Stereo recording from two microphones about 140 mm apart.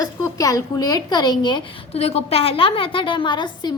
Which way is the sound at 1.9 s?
45° left (ahead or behind).